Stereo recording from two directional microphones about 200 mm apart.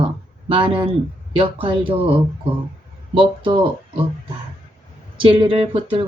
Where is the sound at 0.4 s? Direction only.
25° right (ahead or behind).